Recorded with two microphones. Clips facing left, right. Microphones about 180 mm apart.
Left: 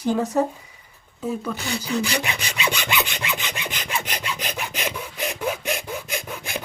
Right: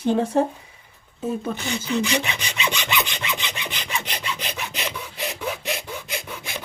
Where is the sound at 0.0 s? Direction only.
30° right (ahead or behind).